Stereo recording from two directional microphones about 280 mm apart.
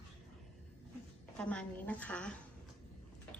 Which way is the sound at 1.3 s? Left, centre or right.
Centre.